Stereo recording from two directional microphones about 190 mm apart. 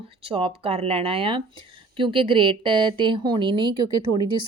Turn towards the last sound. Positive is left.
turn(degrees=-20)  # may be behind; listen again after turning